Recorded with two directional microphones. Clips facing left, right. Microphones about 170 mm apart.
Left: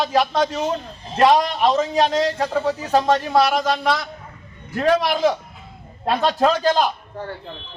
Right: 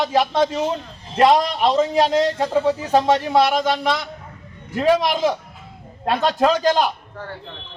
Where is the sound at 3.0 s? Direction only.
10° right (ahead or behind).